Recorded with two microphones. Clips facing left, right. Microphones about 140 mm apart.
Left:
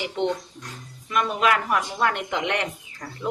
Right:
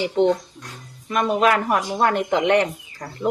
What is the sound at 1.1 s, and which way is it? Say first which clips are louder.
Speech: right 4 dB; 40° right (ahead or behind).